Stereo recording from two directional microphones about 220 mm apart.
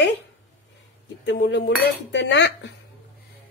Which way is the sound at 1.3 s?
55° left (ahead or behind).